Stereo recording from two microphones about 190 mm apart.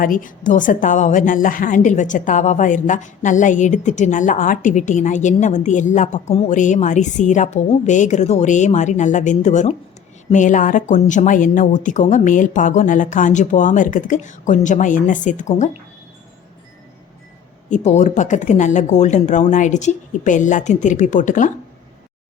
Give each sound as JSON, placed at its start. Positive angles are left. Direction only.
{"t": 0.0, "sound": "a woman's voice", "side_deg": 45}
{"t": 17.7, "sound": "a woman's voice", "side_deg": 40}